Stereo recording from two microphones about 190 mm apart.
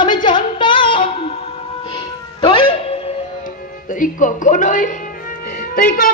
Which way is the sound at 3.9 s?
45° left (ahead or behind).